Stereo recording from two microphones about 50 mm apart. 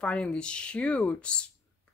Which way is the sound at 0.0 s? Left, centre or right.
Left.